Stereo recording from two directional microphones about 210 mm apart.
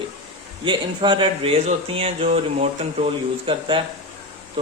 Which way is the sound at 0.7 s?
20° right (ahead or behind).